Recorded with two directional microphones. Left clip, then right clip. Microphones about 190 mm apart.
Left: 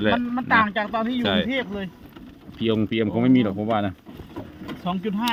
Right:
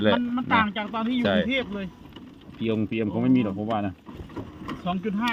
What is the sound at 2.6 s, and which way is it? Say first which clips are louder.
Speech: left 4 dB; 25° left (ahead or behind).